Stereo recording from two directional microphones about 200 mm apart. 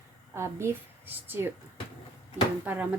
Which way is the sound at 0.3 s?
15° right (ahead or behind).